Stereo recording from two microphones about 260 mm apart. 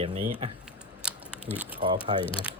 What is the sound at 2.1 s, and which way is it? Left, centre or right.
Speech, right.